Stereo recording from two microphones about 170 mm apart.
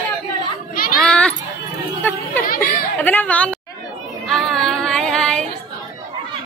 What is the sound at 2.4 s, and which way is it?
Chatter, 60° left (ahead or behind).